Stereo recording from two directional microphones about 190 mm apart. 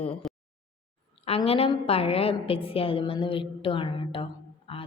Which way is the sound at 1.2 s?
30° left (ahead or behind).